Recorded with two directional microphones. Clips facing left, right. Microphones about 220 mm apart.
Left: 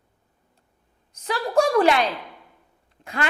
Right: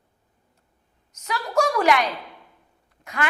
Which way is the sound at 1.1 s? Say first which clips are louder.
Left 2 dB; 30° left (ahead or behind).